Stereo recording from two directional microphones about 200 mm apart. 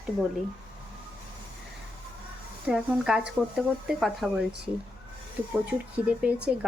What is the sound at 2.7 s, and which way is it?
Speech, 5° right (ahead or behind).